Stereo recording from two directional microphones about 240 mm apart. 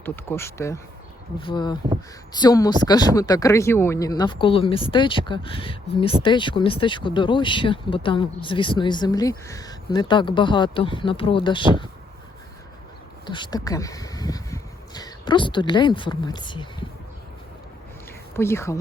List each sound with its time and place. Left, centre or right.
0.0 s speech: centre
13.2 s speech: centre
18.3 s speech: centre